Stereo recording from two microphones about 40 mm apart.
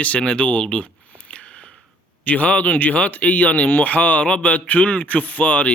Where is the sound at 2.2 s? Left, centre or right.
Left.